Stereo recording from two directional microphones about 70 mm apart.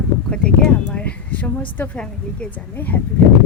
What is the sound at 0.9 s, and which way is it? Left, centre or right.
A woman's voice, left.